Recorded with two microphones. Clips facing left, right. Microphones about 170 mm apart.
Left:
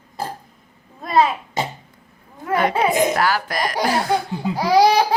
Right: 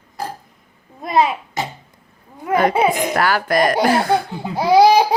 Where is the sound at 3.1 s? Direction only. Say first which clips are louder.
Right 3 dB; 60° right (ahead or behind).